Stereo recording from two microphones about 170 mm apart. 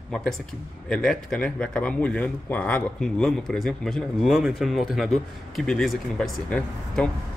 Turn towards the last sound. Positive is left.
turn(degrees=5)  # may be behind; listen again after turning